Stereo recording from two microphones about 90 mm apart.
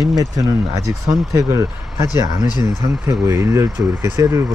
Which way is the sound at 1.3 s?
35° right (ahead or behind).